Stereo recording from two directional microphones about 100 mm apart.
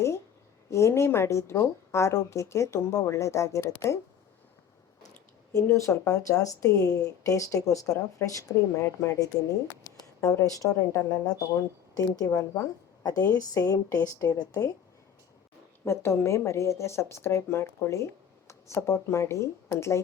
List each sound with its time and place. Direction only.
0.7 s speech: 30° left (ahead or behind)
5.6 s speech: 30° left (ahead or behind)
15.8 s speech: 25° left (ahead or behind)